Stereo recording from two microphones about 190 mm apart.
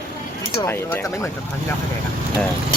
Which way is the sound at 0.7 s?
15° left (ahead or behind).